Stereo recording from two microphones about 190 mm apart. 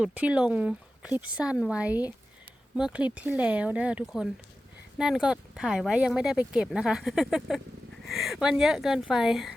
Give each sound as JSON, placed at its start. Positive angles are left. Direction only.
{"t": 0.0, "sound": "speech", "side_deg": -5}